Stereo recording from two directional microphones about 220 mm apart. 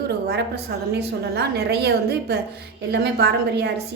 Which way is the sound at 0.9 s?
50° right (ahead or behind).